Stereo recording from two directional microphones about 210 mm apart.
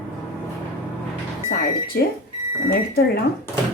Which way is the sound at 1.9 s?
50° left (ahead or behind).